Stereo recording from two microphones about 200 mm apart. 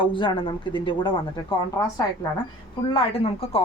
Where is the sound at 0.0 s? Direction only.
25° left (ahead or behind).